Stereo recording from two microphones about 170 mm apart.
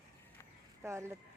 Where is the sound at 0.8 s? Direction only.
15° right (ahead or behind).